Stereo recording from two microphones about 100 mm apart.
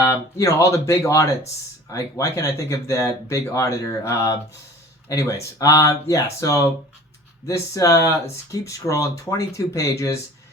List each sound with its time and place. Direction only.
0.0 s speech: 30° left (ahead or behind)